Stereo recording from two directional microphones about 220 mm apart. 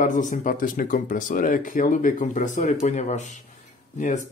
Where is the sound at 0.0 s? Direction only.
35° left (ahead or behind).